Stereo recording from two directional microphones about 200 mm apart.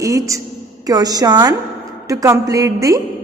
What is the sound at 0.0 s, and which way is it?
A woman's voice, 15° right (ahead or behind).